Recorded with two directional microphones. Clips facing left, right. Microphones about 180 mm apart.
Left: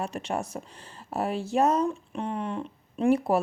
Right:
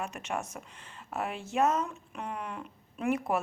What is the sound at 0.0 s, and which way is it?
A woman's voice, 35° left (ahead or behind).